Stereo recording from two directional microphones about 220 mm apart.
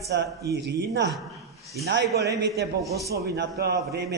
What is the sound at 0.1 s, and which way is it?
Speech, 50° right (ahead or behind).